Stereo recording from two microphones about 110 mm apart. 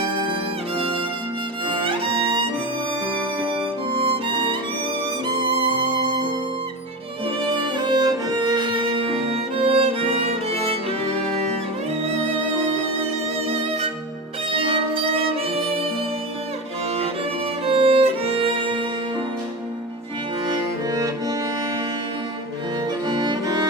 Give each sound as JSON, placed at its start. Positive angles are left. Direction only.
{"t": 1.8, "sound": "violin", "side_deg": -50}
{"t": 3.9, "sound": "music", "side_deg": -60}
{"t": 7.3, "sound": "music", "side_deg": -50}
{"t": 14.5, "sound": "music", "side_deg": -55}
{"t": 17.7, "sound": "music", "side_deg": -65}
{"t": 20.5, "sound": "music", "side_deg": -35}
{"t": 23.0, "sound": "music", "side_deg": -45}